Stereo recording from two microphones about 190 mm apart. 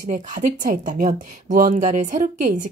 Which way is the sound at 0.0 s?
40° right (ahead or behind).